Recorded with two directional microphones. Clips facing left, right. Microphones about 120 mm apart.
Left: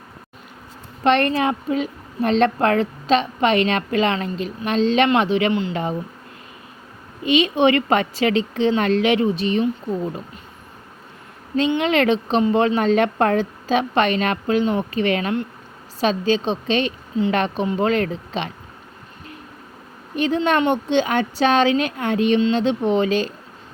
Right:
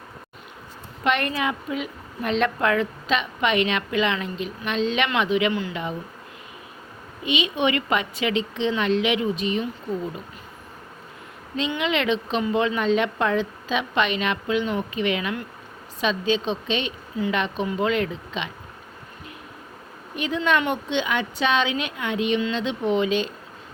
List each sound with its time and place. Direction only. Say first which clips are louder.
1.0 s a woman's voice: left 6 dB; 35° left (ahead or behind)
7.3 s a woman's voice: left 7 dB; 40° left (ahead or behind)
11.8 s a woman's voice: left 2 dB; 40° left (ahead or behind)
20.1 s a woman's voice: left 4 dB; 35° left (ahead or behind)